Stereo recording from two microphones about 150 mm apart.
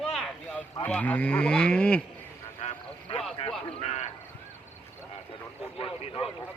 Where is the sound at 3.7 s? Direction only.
45° left (ahead or behind).